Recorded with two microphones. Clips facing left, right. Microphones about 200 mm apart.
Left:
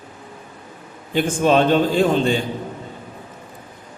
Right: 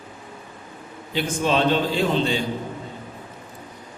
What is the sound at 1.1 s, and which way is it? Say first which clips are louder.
A man's voice: left 5 dB; 50° left (ahead or behind).